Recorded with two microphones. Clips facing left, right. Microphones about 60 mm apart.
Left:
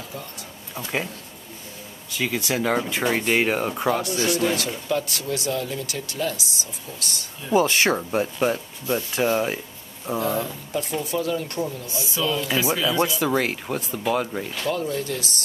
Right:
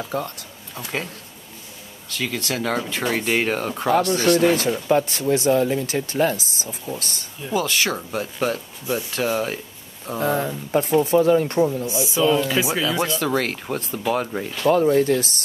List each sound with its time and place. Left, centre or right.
0.1 s speech: right
2.0 s speech: centre
4.1 s speech: right
4.8 s speech: right
7.5 s speech: left
9.1 s speech: centre
10.1 s speech: right; by 12.8 s centre
13.0 s speech: centre
14.6 s speech: right